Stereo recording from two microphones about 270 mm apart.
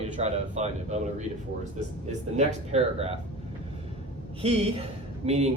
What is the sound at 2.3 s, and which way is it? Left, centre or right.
Speech, right.